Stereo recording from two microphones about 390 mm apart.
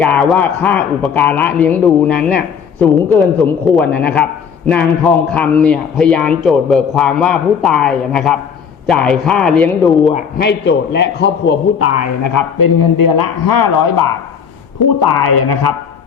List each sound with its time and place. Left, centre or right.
0.0 s a man's voice: centre
5.3 s a man's voice: centre
10.1 s a man's voice: left
12.2 s a man's voice: left